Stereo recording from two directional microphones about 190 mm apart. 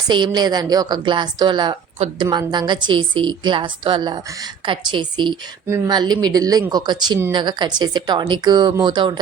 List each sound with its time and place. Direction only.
0.1 s a woman's voice: 25° right (ahead or behind)